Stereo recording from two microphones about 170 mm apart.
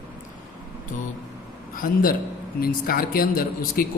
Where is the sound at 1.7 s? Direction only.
55° left (ahead or behind).